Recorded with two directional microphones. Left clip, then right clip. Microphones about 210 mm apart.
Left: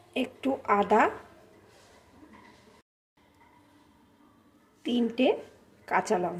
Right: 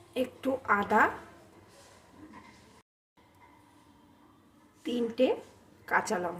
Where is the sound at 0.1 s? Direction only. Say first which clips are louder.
Left 1 dB; 25° left (ahead or behind).